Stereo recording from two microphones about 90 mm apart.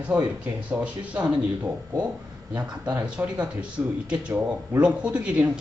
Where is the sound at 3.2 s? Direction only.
20° right (ahead or behind).